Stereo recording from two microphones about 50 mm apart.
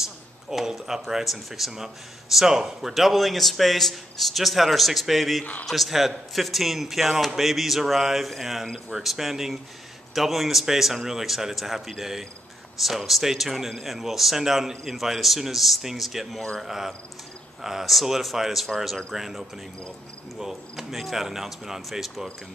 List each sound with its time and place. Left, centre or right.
0.0 s speech: centre
5.4 s a man's voice: left
5.7 s speech: centre